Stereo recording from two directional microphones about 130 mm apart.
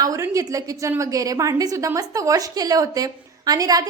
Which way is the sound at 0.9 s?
25° right (ahead or behind).